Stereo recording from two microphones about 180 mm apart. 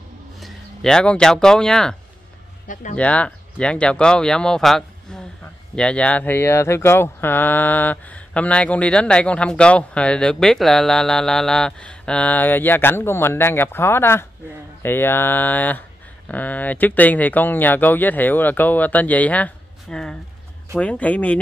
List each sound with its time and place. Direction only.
0.4 s speech: 5° left (ahead or behind)
2.7 s speech: 45° left (ahead or behind)
3.0 s speech: 5° left (ahead or behind)